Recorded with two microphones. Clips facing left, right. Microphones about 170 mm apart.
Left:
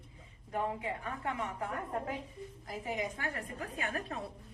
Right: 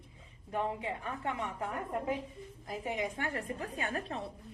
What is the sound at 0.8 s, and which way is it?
Speech, 25° right (ahead or behind).